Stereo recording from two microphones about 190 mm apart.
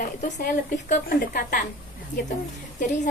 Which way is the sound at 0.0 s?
45° left (ahead or behind).